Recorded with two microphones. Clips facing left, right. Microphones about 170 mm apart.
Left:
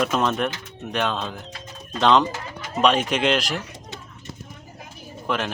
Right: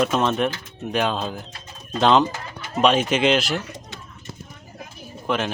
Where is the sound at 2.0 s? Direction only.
5° right (ahead or behind).